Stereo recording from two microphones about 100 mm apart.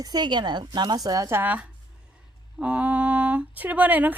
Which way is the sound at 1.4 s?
15° right (ahead or behind).